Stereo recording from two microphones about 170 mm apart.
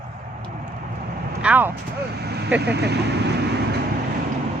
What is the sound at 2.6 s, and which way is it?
Speech, 75° right (ahead or behind).